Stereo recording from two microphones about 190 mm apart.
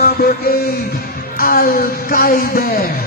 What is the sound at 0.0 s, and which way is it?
Music, 55° left (ahead or behind).